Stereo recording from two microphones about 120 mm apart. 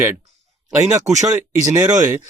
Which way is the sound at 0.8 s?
25° right (ahead or behind).